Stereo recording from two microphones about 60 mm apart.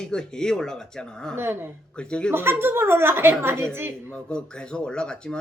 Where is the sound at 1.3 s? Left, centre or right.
Right.